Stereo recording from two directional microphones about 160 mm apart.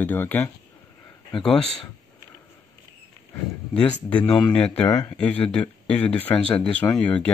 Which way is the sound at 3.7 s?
5° left (ahead or behind).